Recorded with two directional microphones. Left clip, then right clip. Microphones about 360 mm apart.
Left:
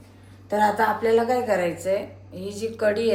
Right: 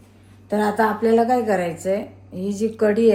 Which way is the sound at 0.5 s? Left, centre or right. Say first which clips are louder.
Right 1 dB; right.